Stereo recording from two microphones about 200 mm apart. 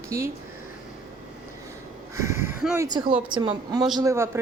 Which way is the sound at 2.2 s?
15° right (ahead or behind).